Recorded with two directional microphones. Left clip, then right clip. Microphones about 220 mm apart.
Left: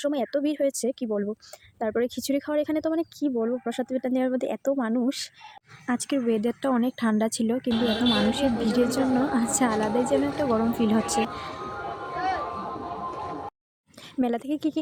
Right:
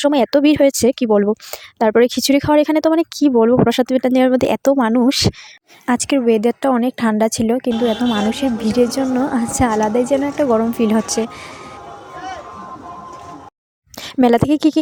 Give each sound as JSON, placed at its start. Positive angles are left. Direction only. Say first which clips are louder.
{"t": 0.0, "sound": "a woman's voice", "louder": "right 13 dB", "side_deg": -40}
{"t": 14.2, "sound": "speech", "louder": "right 14 dB", "side_deg": -40}